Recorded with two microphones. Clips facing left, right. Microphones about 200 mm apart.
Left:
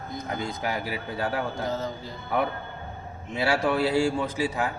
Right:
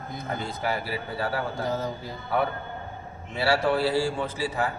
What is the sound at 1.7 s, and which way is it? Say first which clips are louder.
Music: right 1 dB; 10° right (ahead or behind).